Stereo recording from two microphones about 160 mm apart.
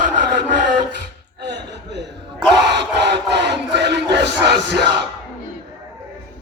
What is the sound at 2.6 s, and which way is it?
Crowd, 90° right.